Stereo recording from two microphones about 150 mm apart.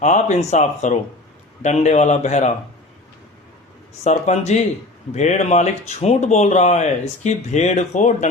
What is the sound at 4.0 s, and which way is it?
Speech, 50° left (ahead or behind).